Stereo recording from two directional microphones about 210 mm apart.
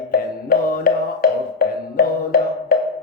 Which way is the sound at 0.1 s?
45° left (ahead or behind).